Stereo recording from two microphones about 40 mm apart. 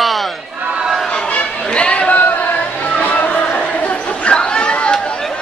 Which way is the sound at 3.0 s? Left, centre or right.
Left.